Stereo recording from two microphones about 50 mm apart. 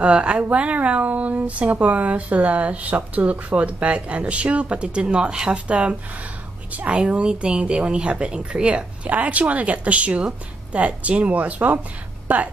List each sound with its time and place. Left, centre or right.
0.0 s a woman's voice: right